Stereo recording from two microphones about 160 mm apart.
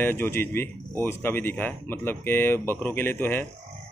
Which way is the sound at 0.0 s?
15° left (ahead or behind).